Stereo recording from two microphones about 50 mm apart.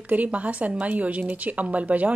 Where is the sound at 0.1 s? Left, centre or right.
Right.